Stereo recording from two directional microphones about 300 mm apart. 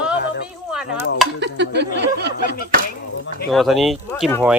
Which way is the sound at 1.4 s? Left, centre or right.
Right.